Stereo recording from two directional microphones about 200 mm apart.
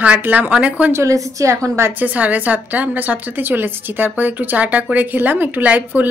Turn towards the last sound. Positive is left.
turn(degrees=-10)  # may be behind; listen again after turning